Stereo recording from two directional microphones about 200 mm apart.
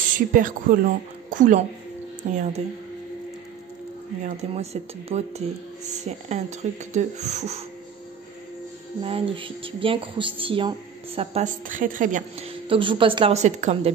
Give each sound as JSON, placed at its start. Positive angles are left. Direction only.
{"t": 0.1, "sound": "a woman's voice", "side_deg": -40}
{"t": 4.2, "sound": "a woman's voice", "side_deg": -35}
{"t": 9.0, "sound": "speech", "side_deg": -25}
{"t": 11.1, "sound": "a woman's voice", "side_deg": -35}